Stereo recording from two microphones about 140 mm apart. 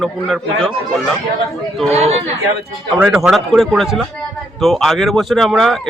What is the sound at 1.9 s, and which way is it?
Speech, 50° right (ahead or behind).